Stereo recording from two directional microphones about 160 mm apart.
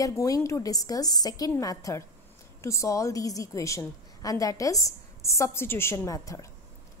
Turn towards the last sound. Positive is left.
turn(degrees=20)  # may be behind; listen again after turning